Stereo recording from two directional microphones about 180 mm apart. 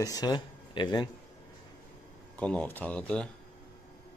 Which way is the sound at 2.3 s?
10° left (ahead or behind).